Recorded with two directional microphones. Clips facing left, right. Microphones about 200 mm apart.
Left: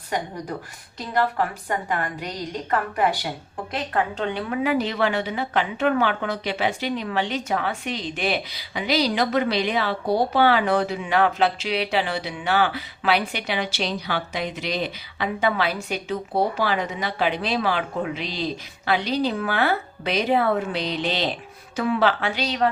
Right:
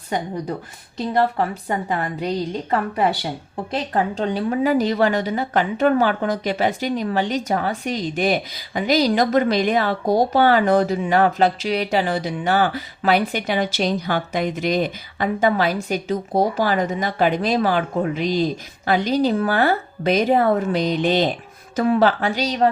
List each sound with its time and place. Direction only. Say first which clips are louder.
1.4 s a woman's voice: right 3 dB; 25° right (ahead or behind)